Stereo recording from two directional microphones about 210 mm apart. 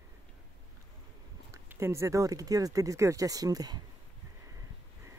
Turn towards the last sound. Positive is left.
turn(degrees=-20)  # may be behind; listen again after turning